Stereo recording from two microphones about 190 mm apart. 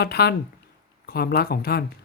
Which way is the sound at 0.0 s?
55° left (ahead or behind).